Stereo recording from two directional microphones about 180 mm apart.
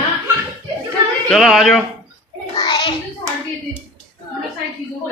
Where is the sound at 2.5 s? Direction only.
25° left (ahead or behind).